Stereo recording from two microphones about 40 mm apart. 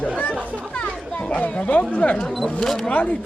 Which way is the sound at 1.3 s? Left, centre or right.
Left.